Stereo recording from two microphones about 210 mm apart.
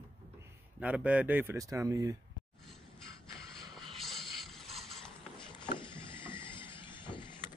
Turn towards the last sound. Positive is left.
turn(degrees=20)  # may be behind; listen again after turning